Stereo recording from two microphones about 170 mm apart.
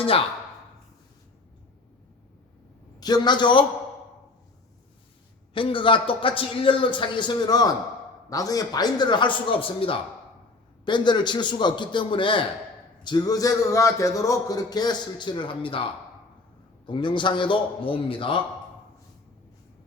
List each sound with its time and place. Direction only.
3.0 s a man's voice: 25° left (ahead or behind)
5.5 s a man's voice: 30° left (ahead or behind)
16.8 s a man's voice: 30° left (ahead or behind)